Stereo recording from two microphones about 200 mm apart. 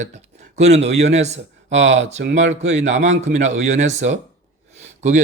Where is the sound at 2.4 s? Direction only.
35° right (ahead or behind).